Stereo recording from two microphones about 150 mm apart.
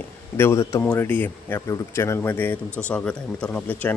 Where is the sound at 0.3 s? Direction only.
15° left (ahead or behind).